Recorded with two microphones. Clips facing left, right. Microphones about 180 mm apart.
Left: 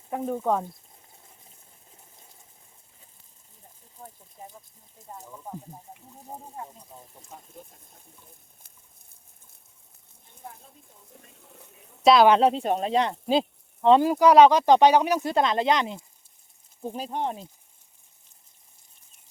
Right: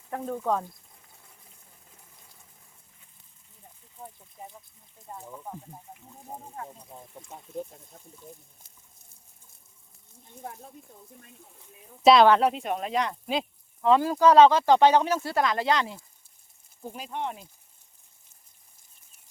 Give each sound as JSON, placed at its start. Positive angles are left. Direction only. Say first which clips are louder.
{"t": 0.2, "sound": "speech", "louder": "left 3 dB", "side_deg": 20}
{"t": 12.0, "sound": "speech", "louder": "even", "side_deg": 0}
{"t": 12.3, "sound": "speech", "louder": "left 3 dB", "side_deg": 25}
{"t": 16.8, "sound": "speech", "louder": "left 4 dB", "side_deg": 30}